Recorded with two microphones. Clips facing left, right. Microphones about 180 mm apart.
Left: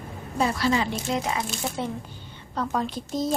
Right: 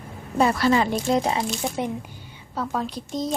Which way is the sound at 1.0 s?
35° right (ahead or behind).